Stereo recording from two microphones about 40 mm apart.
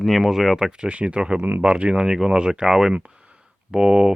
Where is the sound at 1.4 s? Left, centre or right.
Right.